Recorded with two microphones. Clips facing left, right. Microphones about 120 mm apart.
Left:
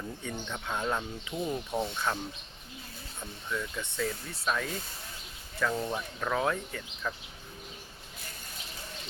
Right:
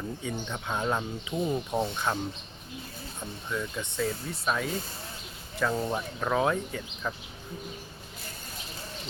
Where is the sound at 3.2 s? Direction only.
20° right (ahead or behind).